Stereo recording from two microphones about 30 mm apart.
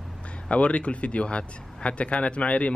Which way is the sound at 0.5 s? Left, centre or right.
Left.